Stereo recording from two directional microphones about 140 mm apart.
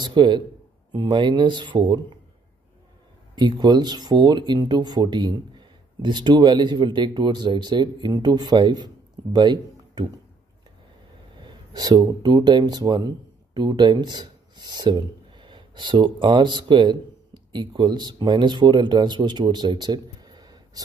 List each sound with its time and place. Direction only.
0.0 s speech: 35° right (ahead or behind)
3.3 s speech: 30° right (ahead or behind)
11.3 s speech: 30° right (ahead or behind)